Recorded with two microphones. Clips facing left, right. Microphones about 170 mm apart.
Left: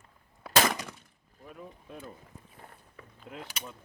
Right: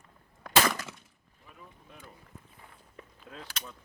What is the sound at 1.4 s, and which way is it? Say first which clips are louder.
Boat: left 7 dB; 50° left (ahead or behind).